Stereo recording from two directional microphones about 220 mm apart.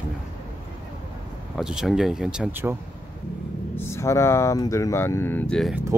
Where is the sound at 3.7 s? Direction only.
10° left (ahead or behind).